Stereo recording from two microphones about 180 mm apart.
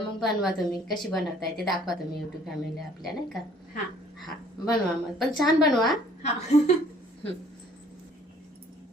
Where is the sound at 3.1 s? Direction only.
Centre (ahead or behind).